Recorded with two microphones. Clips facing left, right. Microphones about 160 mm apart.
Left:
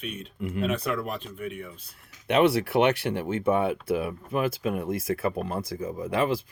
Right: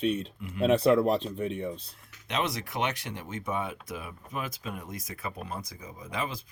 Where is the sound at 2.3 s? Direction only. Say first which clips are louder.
Left 11 dB; 60° left (ahead or behind).